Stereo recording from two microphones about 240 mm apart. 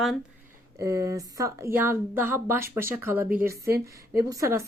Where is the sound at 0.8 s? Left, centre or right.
Centre.